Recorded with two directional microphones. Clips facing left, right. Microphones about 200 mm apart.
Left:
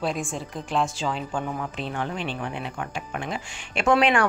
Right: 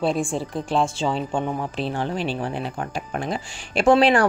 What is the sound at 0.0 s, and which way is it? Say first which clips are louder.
Speech: right 6 dB; 30° right (ahead or behind).